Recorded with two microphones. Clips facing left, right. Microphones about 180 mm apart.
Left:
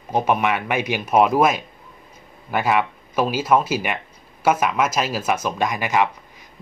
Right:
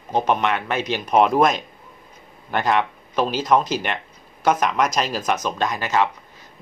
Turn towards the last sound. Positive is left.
turn(degrees=15)  # may be behind; listen again after turning